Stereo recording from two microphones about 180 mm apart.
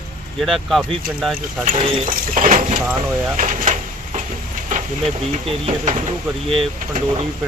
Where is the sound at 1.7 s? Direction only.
30° right (ahead or behind).